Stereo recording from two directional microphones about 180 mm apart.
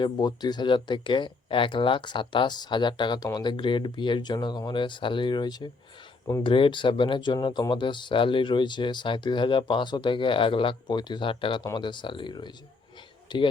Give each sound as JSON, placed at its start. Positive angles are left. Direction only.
{"t": 0.0, "sound": "speech", "side_deg": 25}